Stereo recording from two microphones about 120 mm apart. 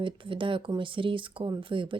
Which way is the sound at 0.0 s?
45° right (ahead or behind).